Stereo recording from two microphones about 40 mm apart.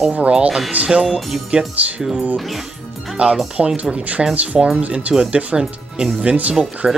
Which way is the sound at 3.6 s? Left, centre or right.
Right.